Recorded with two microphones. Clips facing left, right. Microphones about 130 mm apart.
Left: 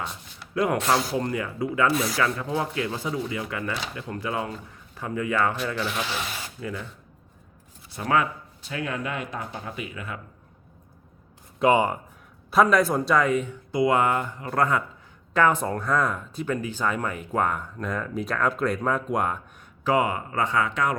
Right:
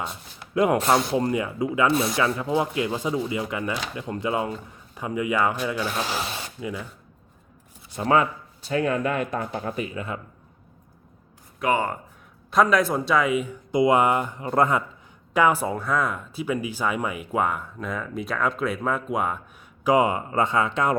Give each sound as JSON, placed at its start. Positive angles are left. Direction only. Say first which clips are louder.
{"t": 0.5, "sound": "speech", "louder": "right 3 dB", "side_deg": -20}
{"t": 5.8, "sound": "speech", "louder": "right 2 dB", "side_deg": -40}
{"t": 6.3, "sound": "speech", "louder": "right 2 dB", "side_deg": -15}
{"t": 8.0, "sound": "speech", "louder": "right 3 dB", "side_deg": -30}
{"t": 11.6, "sound": "speech", "louder": "left 4 dB", "side_deg": 20}
{"t": 12.5, "sound": "speech", "louder": "even", "side_deg": 0}
{"t": 13.7, "sound": "speech", "louder": "right 3 dB", "side_deg": -20}
{"t": 19.8, "sound": "speech", "louder": "right 3 dB", "side_deg": -20}